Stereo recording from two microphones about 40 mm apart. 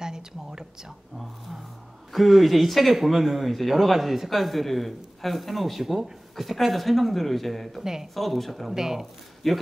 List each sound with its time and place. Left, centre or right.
0.0 s a sound: centre
1.1 s speech: centre
7.8 s speech: centre
8.1 s speech: centre
8.7 s speech: centre
9.4 s speech: centre